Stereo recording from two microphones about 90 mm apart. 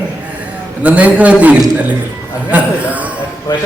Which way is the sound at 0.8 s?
15° right (ahead or behind).